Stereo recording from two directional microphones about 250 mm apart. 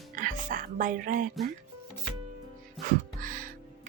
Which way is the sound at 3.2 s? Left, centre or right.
Right.